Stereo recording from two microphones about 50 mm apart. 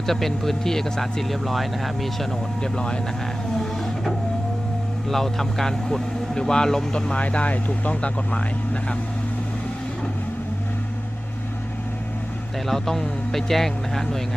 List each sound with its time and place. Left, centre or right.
0.1 s speech: centre
2.7 s speech: centre
5.0 s speech: centre; by 9.0 s left
12.6 s speech: centre